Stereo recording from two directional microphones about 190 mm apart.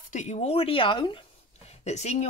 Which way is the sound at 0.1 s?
40° left (ahead or behind).